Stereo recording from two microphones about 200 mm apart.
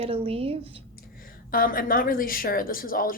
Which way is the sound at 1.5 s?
45° left (ahead or behind).